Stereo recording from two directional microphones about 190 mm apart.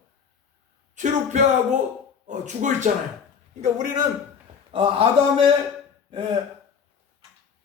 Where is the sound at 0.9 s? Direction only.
40° right (ahead or behind).